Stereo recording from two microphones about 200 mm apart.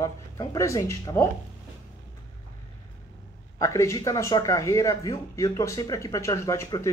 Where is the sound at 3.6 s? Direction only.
15° left (ahead or behind).